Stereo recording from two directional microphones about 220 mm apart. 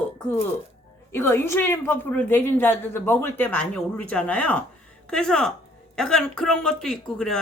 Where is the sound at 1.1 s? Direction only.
10° left (ahead or behind).